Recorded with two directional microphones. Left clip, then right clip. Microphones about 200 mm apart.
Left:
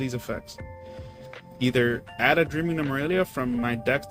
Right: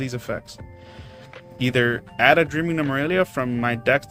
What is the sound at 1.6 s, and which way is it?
Speech, 25° right (ahead or behind).